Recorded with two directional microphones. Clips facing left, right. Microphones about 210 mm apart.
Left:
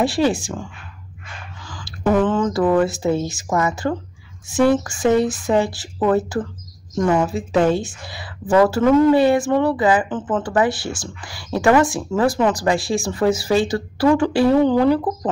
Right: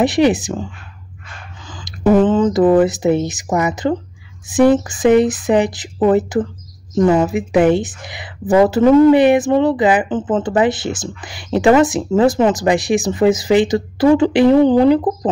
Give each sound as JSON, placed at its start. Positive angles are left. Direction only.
{"t": 0.0, "sound": "speech", "side_deg": -20}
{"t": 1.6, "sound": "a sound", "side_deg": -20}
{"t": 2.2, "sound": "speech", "side_deg": -20}